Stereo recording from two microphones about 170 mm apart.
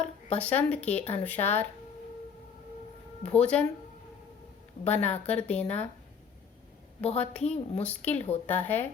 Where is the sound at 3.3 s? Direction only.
10° left (ahead or behind).